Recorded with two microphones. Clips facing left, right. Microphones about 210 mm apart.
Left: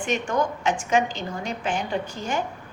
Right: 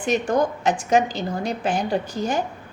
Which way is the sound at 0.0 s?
35° right (ahead or behind).